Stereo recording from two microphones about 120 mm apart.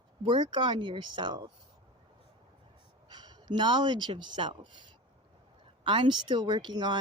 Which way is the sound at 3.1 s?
35° right (ahead or behind).